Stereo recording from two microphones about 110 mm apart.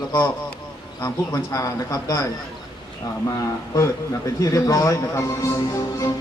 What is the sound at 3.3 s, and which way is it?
Speech, 30° left (ahead or behind).